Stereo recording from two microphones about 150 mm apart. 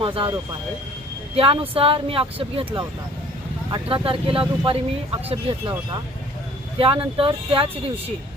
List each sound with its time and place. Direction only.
0.0 s speech: 35° right (ahead or behind)
1.4 s speech: 40° right (ahead or behind)
6.7 s speech: 35° right (ahead or behind)